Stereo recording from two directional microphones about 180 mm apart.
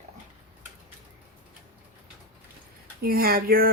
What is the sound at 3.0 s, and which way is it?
Speech, 55° right (ahead or behind).